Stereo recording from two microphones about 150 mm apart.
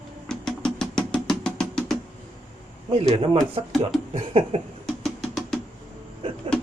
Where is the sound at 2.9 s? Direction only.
40° right (ahead or behind).